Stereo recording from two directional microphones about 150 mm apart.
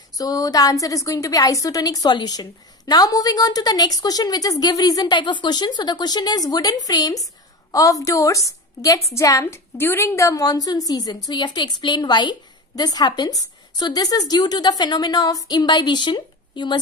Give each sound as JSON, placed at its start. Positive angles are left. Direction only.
{"t": 0.1, "sound": "a woman's voice", "side_deg": 25}